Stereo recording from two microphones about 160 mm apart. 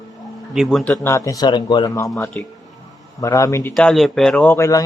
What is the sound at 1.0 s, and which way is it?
A man's voice, 20° left (ahead or behind).